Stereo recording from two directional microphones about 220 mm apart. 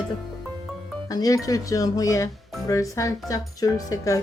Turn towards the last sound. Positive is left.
turn(degrees=15)  # may be behind; listen again after turning